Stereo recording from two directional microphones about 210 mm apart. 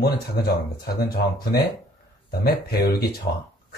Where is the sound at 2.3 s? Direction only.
50° left (ahead or behind).